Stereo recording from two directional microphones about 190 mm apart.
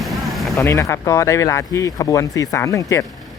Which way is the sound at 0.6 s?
15° left (ahead or behind).